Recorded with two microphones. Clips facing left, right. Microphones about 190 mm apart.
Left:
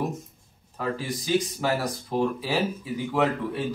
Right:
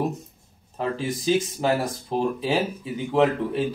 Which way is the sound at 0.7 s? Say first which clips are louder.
Right 3 dB; 25° right (ahead or behind).